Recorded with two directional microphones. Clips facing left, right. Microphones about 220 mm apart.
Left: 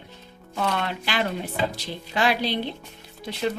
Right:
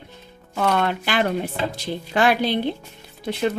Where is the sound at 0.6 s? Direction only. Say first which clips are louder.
Right 5 dB; 55° right (ahead or behind).